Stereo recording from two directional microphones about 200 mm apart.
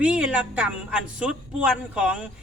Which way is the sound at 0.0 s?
5° right (ahead or behind).